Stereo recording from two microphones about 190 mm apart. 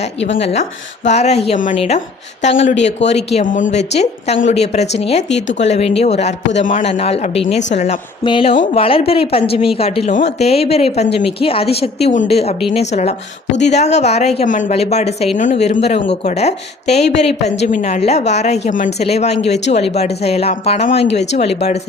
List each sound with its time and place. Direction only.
0.3 s speech: 35° left (ahead or behind)
6.9 s speech: 35° left (ahead or behind)
8.2 s speech: 25° left (ahead or behind)